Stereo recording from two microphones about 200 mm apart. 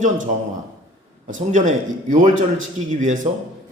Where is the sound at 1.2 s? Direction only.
40° right (ahead or behind).